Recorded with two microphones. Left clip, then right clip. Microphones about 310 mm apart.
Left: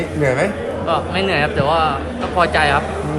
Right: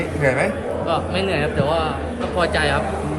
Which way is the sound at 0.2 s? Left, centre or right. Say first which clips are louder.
Left 2 dB; left.